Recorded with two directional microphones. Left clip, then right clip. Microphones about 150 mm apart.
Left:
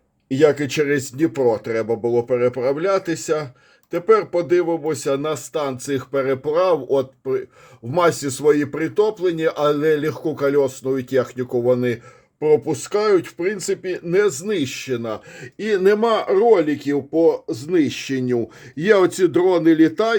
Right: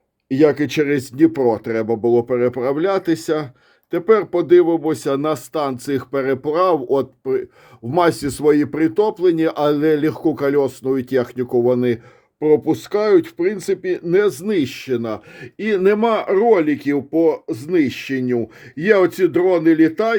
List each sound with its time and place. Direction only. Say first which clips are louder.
0.3 s speech: right 1 dB; 40° right (ahead or behind)
17.5 s speech: right 1 dB; 10° right (ahead or behind)